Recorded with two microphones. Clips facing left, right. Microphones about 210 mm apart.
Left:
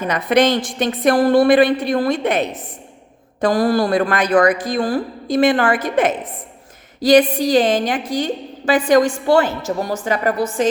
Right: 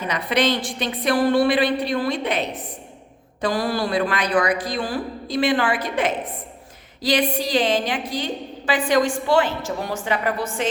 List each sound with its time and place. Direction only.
0.1 s a woman's voice: 50° left (ahead or behind)